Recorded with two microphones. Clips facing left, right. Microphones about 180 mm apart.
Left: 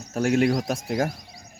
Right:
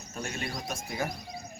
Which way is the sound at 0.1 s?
75° left (ahead or behind).